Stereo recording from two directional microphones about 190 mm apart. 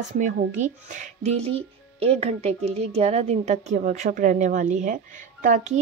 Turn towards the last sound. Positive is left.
turn(degrees=-40)  # may be behind; listen again after turning